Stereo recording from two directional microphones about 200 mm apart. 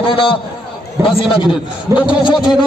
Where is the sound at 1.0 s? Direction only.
15° right (ahead or behind).